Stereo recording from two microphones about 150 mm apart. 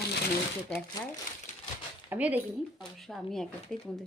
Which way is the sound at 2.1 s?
10° right (ahead or behind).